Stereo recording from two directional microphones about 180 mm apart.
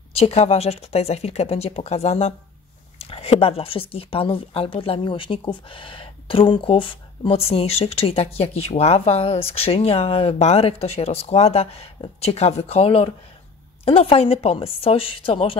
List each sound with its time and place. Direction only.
0.1 s speech: 35° left (ahead or behind)